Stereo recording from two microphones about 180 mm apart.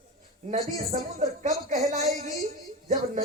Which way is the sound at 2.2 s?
45° right (ahead or behind).